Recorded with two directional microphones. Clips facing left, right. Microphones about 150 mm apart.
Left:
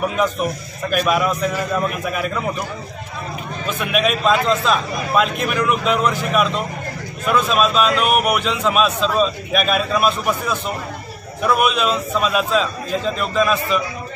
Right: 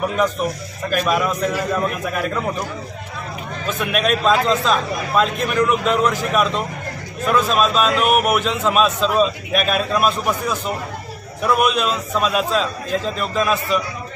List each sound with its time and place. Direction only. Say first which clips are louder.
0.9 s a man's voice: left 1 dB; 5° left (ahead or behind)
3.8 s a man's voice: even; centre (ahead or behind)
11.4 s a man's voice: even; centre (ahead or behind)